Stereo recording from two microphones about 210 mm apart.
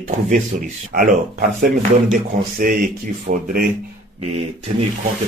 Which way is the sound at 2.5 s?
40° right (ahead or behind).